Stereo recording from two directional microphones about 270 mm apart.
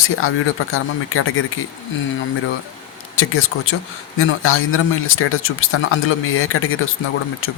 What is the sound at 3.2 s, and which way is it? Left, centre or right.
Speech, left.